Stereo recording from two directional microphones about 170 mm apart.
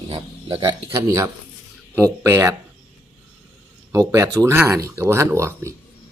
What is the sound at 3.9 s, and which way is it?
Speech, 15° right (ahead or behind).